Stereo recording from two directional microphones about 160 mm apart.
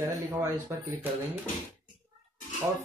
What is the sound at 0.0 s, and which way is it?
Speech, 15° right (ahead or behind).